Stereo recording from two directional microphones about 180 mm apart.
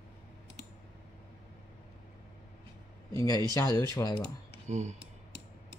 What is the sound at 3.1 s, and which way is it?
Speech, 20° left (ahead or behind).